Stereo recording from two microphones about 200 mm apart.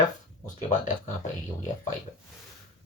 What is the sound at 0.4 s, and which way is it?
Speech, 40° left (ahead or behind).